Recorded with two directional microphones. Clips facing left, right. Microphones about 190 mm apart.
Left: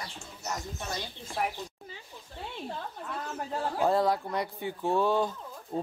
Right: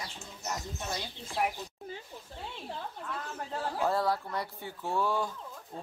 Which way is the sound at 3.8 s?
20° left (ahead or behind).